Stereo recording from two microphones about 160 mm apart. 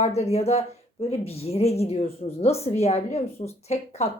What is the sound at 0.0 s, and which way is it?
Speech, 40° left (ahead or behind).